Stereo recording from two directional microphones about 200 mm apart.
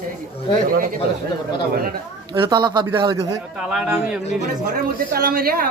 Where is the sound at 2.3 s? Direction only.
20° right (ahead or behind).